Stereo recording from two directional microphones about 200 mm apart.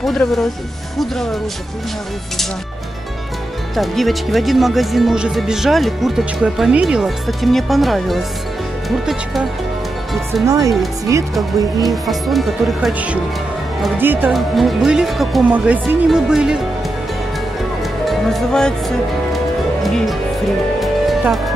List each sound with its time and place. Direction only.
0.0 s speech: centre (ahead or behind)
3.7 s speech: centre (ahead or behind)
10.4 s speech: 15° right (ahead or behind)
11.9 s speech: centre (ahead or behind)
18.0 s music: centre (ahead or behind)